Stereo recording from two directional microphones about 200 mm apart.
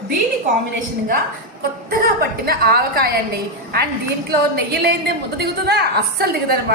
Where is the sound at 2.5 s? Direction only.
50° right (ahead or behind).